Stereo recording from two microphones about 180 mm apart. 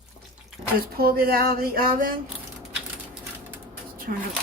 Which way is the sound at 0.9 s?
55° right (ahead or behind).